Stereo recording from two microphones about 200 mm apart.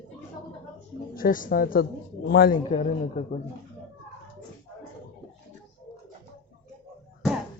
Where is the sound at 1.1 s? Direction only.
45° left (ahead or behind).